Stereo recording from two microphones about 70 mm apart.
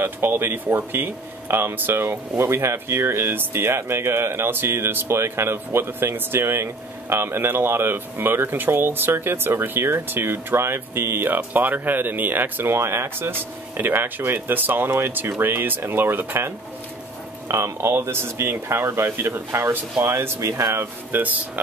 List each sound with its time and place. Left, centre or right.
0.0 s speech: right
17.5 s speech: right